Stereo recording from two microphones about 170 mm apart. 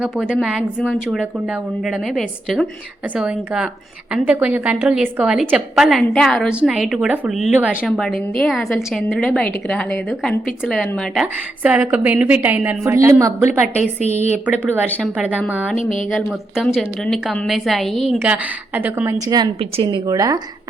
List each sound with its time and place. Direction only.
0.0 s a woman's voice: 5° right (ahead or behind)
14.7 s speech: 10° left (ahead or behind)
15.1 s speech: 5° right (ahead or behind)
15.8 s speech: 50° left (ahead or behind)
16.1 s speech: centre (ahead or behind)
18.2 s a woman's voice: 10° right (ahead or behind)
19.2 s a woman's voice: 20° right (ahead or behind)